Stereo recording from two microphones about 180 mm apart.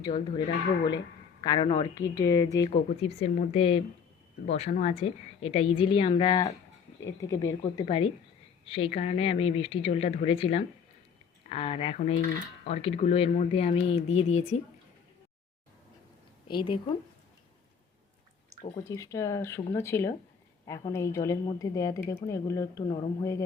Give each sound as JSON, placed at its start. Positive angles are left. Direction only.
{"t": 0.0, "sound": "a woman's voice", "side_deg": 25}
{"t": 2.6, "sound": "a woman's voice", "side_deg": 35}
{"t": 16.5, "sound": "a woman's voice", "side_deg": 25}
{"t": 18.8, "sound": "speech", "side_deg": 20}